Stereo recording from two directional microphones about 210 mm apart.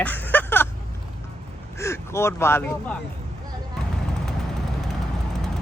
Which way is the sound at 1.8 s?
15° left (ahead or behind).